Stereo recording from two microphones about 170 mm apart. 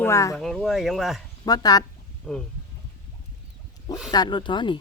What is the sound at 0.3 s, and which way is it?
Speech, centre (ahead or behind).